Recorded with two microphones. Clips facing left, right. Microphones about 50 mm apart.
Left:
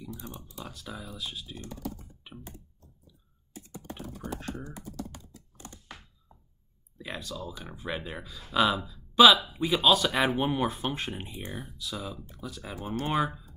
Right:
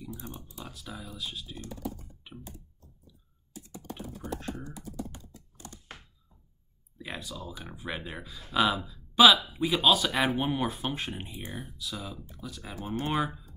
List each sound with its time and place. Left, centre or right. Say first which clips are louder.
0.7 s speech: left 1 dB; centre
1.9 s computer keyboard: even; centre
3.9 s computer keyboard: even; centre
5.2 s computer keyboard: even; left
7.0 s speech: left 2 dB; centre